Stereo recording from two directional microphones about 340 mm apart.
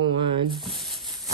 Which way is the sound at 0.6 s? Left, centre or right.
Centre.